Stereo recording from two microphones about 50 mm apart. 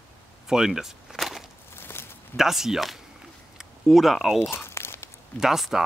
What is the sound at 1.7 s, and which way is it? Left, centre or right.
Walk, left.